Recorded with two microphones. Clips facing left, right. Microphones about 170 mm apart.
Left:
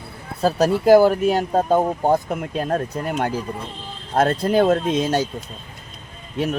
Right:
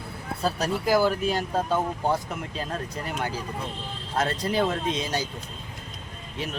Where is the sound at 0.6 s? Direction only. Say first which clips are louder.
Left 10 dB; 60° left (ahead or behind).